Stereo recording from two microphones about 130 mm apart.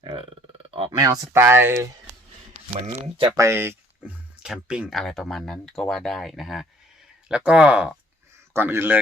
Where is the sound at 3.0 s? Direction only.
45° right (ahead or behind).